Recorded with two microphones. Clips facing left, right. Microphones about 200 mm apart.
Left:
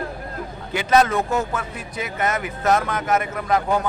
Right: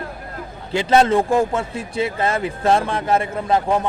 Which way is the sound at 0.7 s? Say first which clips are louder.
Right 3 dB; 25° right (ahead or behind).